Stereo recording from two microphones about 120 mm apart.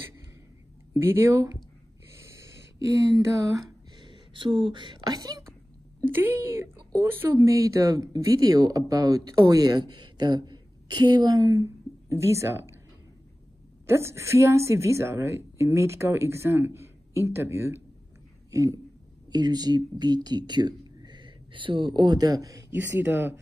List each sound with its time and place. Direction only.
0.9 s a woman's voice: 20° right (ahead or behind)
2.3 s a sound: 25° right (ahead or behind)
6.0 s speech: 15° right (ahead or behind); by 11.4 s 35° right (ahead or behind)
11.4 s speech: 20° right (ahead or behind)
13.8 s a woman's voice: 25° right (ahead or behind)
22.7 s speech: 15° right (ahead or behind)